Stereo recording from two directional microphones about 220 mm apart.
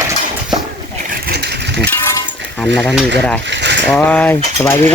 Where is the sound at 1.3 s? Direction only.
50° right (ahead or behind).